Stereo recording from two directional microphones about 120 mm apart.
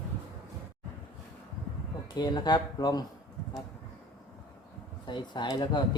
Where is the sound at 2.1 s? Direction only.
35° left (ahead or behind).